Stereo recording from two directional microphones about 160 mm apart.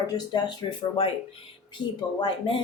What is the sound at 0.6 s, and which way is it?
Speech, 30° left (ahead or behind).